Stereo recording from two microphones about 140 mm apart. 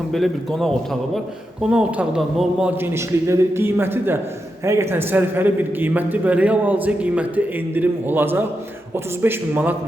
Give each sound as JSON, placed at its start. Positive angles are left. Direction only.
{"t": 0.1, "sound": "a man's voice", "side_deg": 0}
{"t": 1.7, "sound": "a man's voice", "side_deg": -5}